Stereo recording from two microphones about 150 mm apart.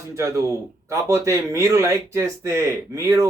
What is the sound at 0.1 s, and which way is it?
Speech, 20° right (ahead or behind).